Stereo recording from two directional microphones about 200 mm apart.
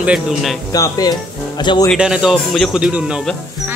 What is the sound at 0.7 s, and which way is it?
A child's voice, 20° left (ahead or behind).